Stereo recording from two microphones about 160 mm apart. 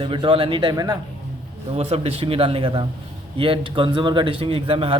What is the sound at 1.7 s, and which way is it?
A man's voice, 40° right (ahead or behind).